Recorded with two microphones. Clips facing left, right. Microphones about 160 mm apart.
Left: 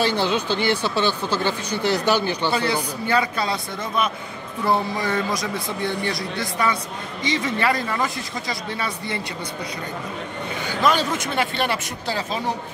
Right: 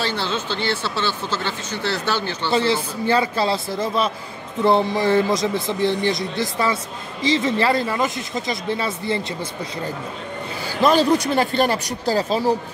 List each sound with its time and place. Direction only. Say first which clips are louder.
0.0 s speech: left 3 dB; 15° left (ahead or behind)
2.5 s speech: right 3 dB; 25° right (ahead or behind)
10.7 s speech: right 5 dB; 35° right (ahead or behind)